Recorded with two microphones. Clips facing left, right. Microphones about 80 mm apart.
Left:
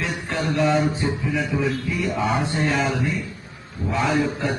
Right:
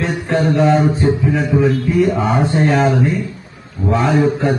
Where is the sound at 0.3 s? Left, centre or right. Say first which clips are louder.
Right 7 dB; right.